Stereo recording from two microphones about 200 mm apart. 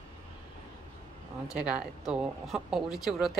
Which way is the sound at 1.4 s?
5° right (ahead or behind).